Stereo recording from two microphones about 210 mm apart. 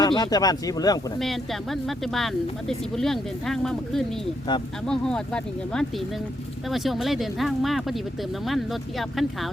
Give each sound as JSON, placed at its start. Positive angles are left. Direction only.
{"t": 0.0, "sound": "speech", "side_deg": 20}
{"t": 1.2, "sound": "speech", "side_deg": 0}